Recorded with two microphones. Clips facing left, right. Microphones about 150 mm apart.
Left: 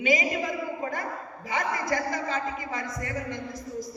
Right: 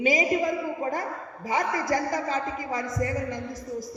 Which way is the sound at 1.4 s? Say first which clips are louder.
Right 3 dB; 35° right (ahead or behind).